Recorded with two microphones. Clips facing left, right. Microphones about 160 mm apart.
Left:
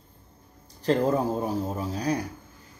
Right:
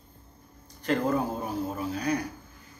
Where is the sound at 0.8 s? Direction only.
35° left (ahead or behind).